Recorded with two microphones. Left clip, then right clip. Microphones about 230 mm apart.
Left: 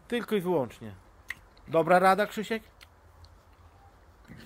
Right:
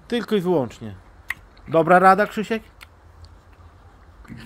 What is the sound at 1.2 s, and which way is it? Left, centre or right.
Speech, centre.